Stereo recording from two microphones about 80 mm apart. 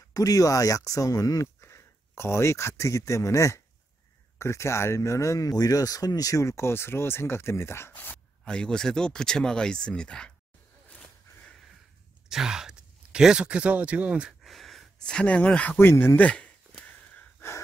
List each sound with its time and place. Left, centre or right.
0.1 s speech: left
8.5 s speech: centre
12.3 s speech: centre
14.4 s a sound: centre
15.8 s speech: left
16.2 s a sound: centre